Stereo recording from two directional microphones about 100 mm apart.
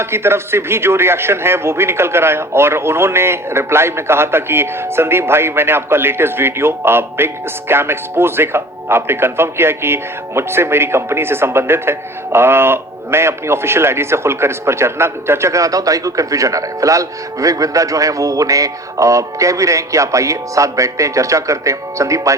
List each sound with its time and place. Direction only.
0.0 s speech: 25° right (ahead or behind)